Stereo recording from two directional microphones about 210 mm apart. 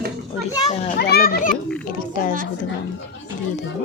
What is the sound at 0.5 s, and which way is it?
Music, 25° left (ahead or behind).